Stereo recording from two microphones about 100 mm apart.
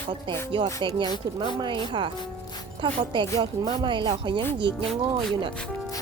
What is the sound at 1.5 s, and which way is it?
Music, 50° right (ahead or behind).